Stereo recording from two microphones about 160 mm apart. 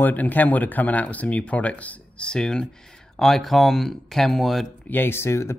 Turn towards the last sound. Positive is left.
turn(degrees=15)  # may be behind; listen again after turning